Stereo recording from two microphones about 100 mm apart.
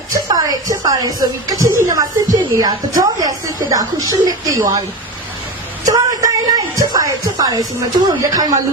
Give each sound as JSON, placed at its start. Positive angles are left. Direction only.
{"t": 0.1, "sound": "a sound", "side_deg": -40}
{"t": 1.5, "sound": "a woman's voice", "side_deg": -35}
{"t": 5.8, "sound": "a woman's voice", "side_deg": -35}